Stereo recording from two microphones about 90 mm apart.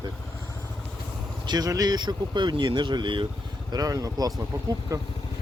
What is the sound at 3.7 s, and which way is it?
Speech, 40° right (ahead or behind).